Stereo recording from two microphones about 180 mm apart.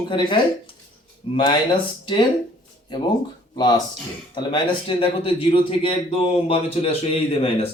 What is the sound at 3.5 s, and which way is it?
Speech, 25° left (ahead or behind).